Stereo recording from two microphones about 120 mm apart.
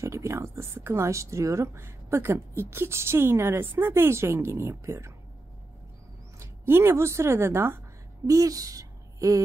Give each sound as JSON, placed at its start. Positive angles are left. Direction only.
{"t": 0.0, "sound": "a sound", "side_deg": -25}
{"t": 2.7, "sound": "speech", "side_deg": -20}
{"t": 6.4, "sound": "speech", "side_deg": -20}